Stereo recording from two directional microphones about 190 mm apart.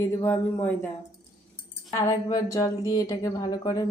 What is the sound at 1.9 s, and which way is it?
Speech, 15° left (ahead or behind).